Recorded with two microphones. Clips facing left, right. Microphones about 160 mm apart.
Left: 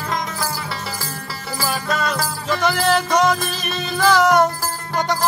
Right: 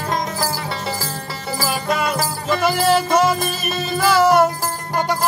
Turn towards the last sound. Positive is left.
turn(degrees=-5)  # may be behind; listen again after turning